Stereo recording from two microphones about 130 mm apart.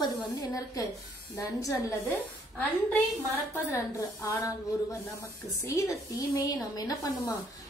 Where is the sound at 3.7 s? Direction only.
25° left (ahead or behind).